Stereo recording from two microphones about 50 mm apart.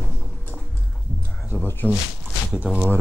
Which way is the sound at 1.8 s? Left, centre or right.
Right.